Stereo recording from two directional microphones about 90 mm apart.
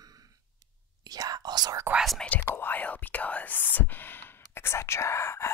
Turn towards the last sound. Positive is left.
turn(degrees=30)  # may be behind; listen again after turning